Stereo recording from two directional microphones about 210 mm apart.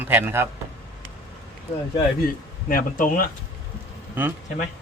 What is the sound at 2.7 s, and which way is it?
Speech, 40° left (ahead or behind).